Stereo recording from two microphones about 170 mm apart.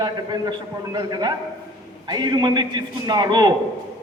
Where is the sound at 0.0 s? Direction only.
25° right (ahead or behind).